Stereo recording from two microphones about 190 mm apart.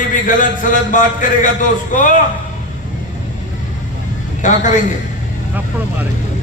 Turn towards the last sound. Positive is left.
turn(degrees=40)  # may be behind; listen again after turning